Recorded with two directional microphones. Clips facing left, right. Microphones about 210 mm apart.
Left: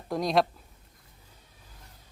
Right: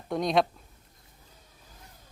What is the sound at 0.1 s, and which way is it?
Speech, centre (ahead or behind).